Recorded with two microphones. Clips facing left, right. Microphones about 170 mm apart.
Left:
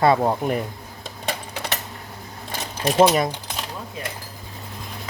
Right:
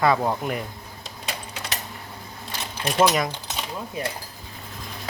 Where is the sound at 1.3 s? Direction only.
60° left (ahead or behind).